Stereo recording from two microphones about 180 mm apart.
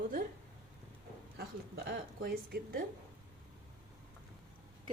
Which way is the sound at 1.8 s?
60° right (ahead or behind).